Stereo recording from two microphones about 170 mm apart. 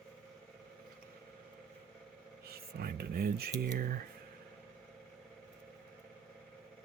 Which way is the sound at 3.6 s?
60° right (ahead or behind).